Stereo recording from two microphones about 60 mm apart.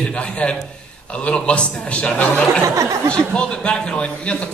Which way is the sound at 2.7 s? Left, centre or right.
Right.